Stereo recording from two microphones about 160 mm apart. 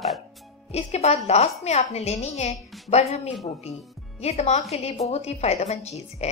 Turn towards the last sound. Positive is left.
turn(degrees=40)  # may be behind; listen again after turning